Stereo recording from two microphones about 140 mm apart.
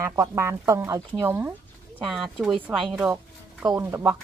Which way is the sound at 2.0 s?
Centre (ahead or behind).